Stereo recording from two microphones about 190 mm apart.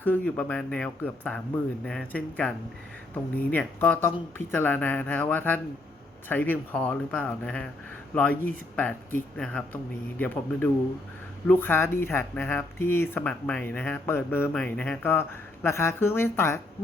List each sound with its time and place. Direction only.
0.0 s speech: 10° left (ahead or behind)